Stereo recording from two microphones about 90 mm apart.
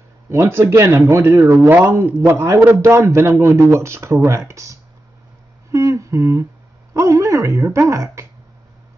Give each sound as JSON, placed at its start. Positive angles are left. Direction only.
{"t": 0.3, "sound": "speech", "side_deg": -30}